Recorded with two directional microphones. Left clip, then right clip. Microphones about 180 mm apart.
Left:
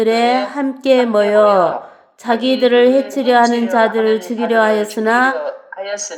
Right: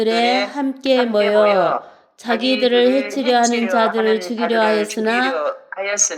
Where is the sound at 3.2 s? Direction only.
25° right (ahead or behind).